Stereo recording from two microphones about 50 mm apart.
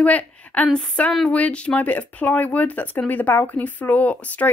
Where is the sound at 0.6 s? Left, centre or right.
Centre.